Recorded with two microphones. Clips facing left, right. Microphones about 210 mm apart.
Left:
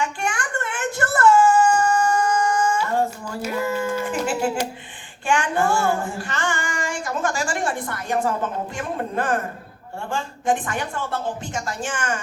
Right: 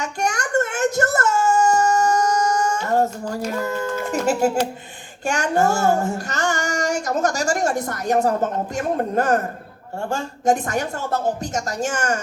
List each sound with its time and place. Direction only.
0.0 s a sound: 40° right (ahead or behind)
4.0 s music: 40° right (ahead or behind)
5.2 s child singing: 40° right (ahead or behind)